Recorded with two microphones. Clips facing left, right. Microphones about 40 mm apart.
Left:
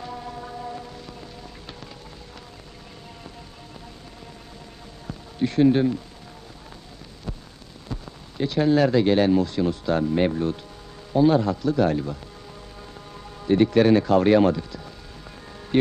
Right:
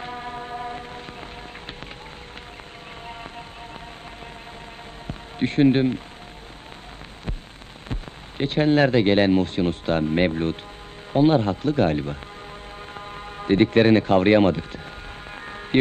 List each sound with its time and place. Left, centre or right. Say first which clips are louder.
0.0 s a sound: right 2 dB; right
5.0 s basketball bounce: even; right
7.9 s speech: right 1 dB; right
15.4 s music: right 1 dB; right